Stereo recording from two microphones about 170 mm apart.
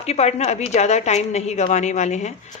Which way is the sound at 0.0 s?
40° left (ahead or behind).